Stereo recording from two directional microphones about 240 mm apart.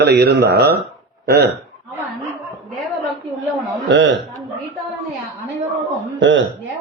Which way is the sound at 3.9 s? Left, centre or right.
Right.